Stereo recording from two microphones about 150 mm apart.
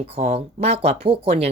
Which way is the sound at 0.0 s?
45° right (ahead or behind).